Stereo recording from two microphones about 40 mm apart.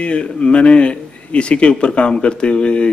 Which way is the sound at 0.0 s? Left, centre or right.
Left.